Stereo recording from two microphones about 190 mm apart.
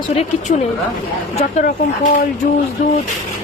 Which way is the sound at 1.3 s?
40° left (ahead or behind).